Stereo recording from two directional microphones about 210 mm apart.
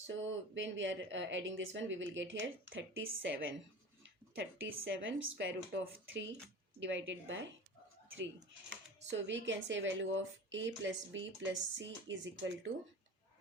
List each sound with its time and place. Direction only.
0.1 s speech: 60° right (ahead or behind)
4.6 s speech: 65° right (ahead or behind)
8.7 s speech: 60° right (ahead or behind)